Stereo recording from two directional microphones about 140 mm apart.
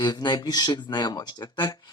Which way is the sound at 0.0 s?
30° left (ahead or behind).